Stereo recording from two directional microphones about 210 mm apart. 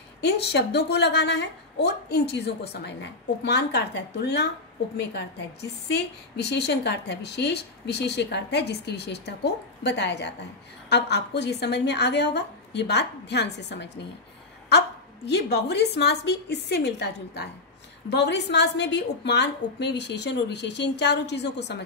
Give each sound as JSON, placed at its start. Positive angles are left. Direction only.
{"t": 0.2, "sound": "a woman's voice", "side_deg": 50}
{"t": 5.9, "sound": "a woman's voice", "side_deg": 55}
{"t": 15.2, "sound": "a woman's voice", "side_deg": 55}